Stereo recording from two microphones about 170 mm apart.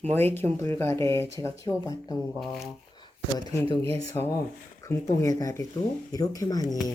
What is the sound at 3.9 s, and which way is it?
Speech, 20° left (ahead or behind).